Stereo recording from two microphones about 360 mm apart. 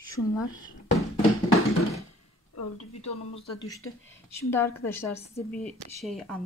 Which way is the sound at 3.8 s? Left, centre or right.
Left.